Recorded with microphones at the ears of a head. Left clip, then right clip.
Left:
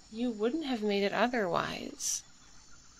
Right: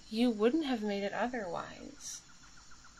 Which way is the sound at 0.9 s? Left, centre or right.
Left.